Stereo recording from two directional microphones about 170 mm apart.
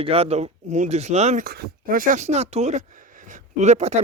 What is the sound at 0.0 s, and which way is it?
Speech, 35° right (ahead or behind).